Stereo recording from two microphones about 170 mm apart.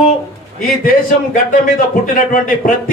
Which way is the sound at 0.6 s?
55° left (ahead or behind).